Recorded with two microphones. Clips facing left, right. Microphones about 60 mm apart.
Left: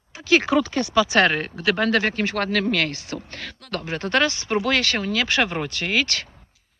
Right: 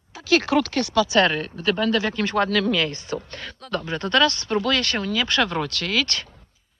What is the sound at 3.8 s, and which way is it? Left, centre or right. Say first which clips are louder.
Speech: right 1 dB; centre.